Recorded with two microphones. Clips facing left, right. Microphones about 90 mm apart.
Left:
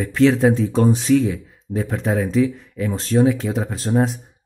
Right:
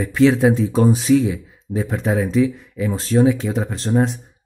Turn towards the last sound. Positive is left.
turn(degrees=0)  # may be behind; listen again after turning